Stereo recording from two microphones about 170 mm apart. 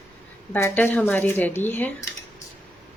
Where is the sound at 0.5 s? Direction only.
10° left (ahead or behind).